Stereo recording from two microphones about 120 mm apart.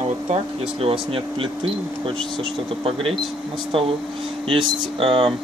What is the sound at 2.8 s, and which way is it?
Speech, 50° right (ahead or behind).